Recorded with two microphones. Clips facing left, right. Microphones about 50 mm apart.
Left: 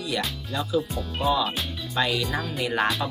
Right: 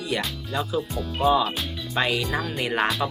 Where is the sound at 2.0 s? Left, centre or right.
Right.